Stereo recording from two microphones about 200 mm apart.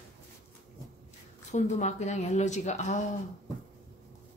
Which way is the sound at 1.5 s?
35° left (ahead or behind).